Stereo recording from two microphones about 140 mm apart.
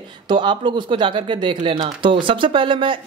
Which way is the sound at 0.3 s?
35° right (ahead or behind).